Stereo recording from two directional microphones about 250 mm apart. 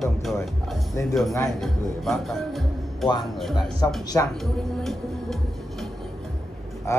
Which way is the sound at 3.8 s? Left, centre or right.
Centre.